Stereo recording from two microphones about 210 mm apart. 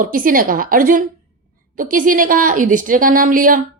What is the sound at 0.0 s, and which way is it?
A woman's voice, 40° right (ahead or behind).